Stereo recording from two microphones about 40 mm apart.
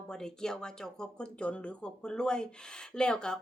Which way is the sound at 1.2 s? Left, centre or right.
Left.